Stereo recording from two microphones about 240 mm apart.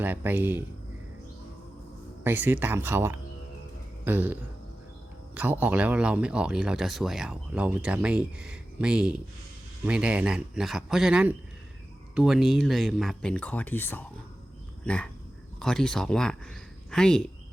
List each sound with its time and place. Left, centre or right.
0.0 s speech: centre
2.2 s speech: centre